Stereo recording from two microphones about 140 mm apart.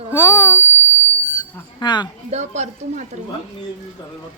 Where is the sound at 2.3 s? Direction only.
55° right (ahead or behind).